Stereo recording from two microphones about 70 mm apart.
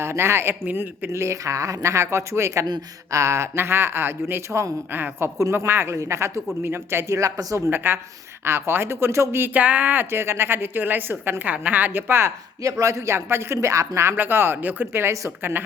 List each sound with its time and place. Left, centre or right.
0.0 s speech: right
7.2 s speech: right
7.9 s a woman's voice: right
12.8 s speech: right